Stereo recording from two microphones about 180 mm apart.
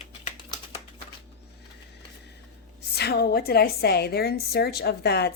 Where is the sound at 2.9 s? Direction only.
65° left (ahead or behind).